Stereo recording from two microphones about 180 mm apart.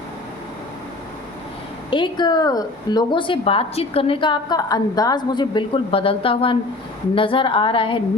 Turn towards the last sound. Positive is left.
turn(degrees=30)  # may be behind; listen again after turning